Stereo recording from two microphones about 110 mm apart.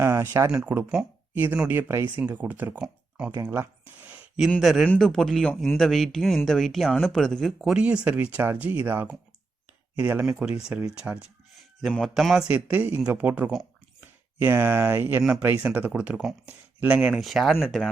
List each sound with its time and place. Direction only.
0.0 s speech: 20° right (ahead or behind); by 7.5 s 5° left (ahead or behind)
7.6 s speech: 10° right (ahead or behind)
17.2 s speech: centre (ahead or behind)